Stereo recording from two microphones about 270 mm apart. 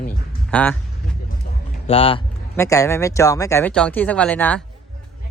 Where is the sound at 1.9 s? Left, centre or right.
Left.